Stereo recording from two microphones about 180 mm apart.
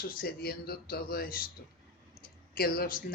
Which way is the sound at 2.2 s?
55° left (ahead or behind).